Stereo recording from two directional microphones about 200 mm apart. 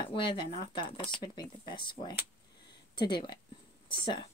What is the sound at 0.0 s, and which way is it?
Speech, 25° left (ahead or behind).